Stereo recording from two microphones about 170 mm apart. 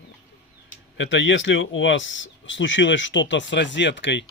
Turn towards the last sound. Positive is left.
turn(degrees=90)